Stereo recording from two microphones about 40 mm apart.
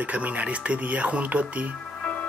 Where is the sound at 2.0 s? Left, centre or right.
Left.